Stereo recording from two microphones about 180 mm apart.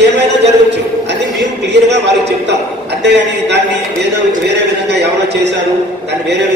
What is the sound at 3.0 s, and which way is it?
A man's voice, 70° right (ahead or behind).